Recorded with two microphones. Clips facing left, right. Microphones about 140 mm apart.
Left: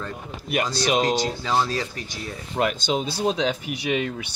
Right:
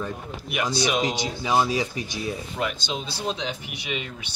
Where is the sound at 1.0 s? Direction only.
15° right (ahead or behind).